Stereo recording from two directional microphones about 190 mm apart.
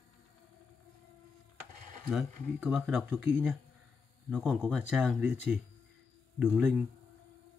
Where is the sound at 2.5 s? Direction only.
Centre (ahead or behind).